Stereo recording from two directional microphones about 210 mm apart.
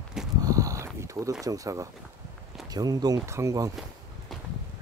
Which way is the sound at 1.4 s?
15° right (ahead or behind).